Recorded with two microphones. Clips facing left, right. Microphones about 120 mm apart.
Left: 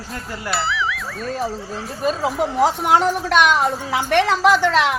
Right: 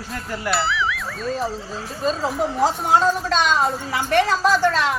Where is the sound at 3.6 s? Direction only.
85° left.